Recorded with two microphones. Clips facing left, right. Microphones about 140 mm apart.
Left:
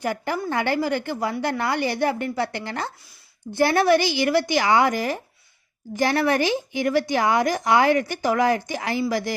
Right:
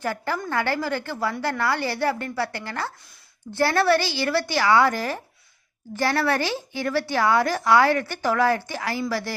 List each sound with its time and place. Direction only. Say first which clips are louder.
0.0 s a woman's voice: left 2 dB; 15° left (ahead or behind)